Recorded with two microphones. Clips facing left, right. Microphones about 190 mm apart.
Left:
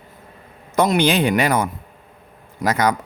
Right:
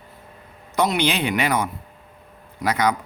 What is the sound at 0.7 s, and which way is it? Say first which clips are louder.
A man's voice: left 4 dB; 45° left (ahead or behind).